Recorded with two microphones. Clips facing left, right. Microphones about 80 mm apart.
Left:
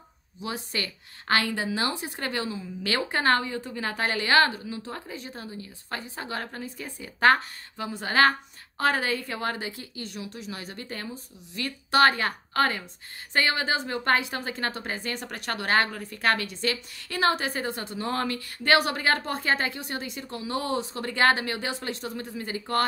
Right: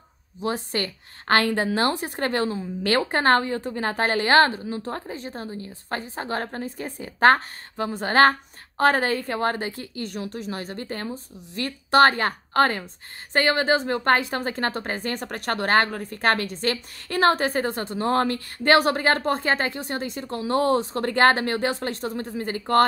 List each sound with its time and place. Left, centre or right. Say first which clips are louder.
0.4 s a woman's voice: right 6 dB; right